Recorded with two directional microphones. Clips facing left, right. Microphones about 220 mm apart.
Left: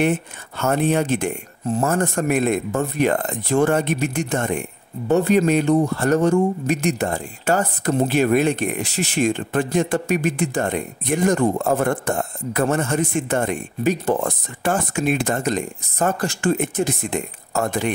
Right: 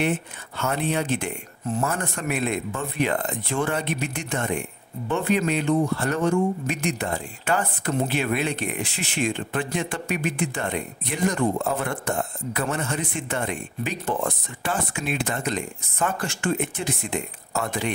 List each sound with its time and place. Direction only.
0.0 s speech: 45° left (ahead or behind)